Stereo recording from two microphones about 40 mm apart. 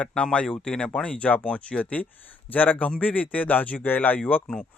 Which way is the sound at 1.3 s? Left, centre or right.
Left.